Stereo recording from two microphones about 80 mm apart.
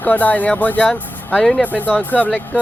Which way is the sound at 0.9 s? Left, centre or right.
Centre.